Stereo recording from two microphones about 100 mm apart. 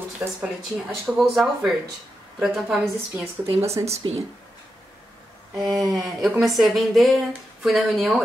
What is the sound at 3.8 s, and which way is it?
Speech, 40° right (ahead or behind).